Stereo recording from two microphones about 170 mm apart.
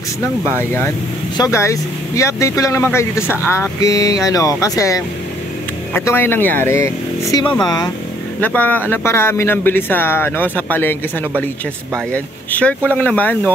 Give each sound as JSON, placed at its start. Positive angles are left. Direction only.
{"t": 1.3, "sound": "a man's voice", "side_deg": 20}
{"t": 8.4, "sound": "a man's voice", "side_deg": 10}